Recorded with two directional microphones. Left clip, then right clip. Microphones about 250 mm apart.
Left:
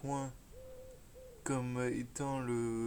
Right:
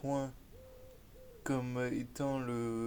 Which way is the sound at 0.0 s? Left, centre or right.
Centre.